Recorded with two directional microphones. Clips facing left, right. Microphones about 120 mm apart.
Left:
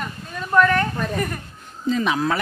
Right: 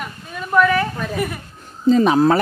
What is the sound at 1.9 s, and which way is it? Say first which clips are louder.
Speech: right 8 dB; 35° right (ahead or behind).